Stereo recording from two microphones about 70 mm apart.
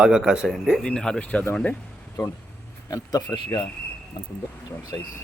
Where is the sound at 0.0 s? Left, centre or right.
Centre.